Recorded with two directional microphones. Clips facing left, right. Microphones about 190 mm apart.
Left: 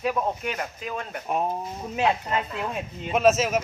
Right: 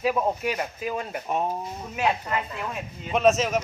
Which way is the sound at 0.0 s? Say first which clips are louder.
Right 2 dB; 5° right (ahead or behind).